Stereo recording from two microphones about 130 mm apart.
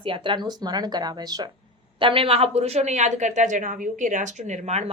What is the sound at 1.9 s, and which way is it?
A woman's voice, 45° right (ahead or behind).